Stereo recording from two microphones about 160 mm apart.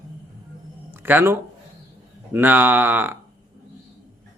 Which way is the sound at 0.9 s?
15° right (ahead or behind).